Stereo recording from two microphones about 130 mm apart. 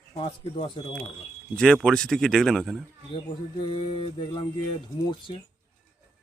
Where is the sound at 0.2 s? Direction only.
45° left (ahead or behind).